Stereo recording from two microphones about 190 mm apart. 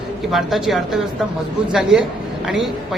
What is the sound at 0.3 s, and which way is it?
Speech, centre (ahead or behind).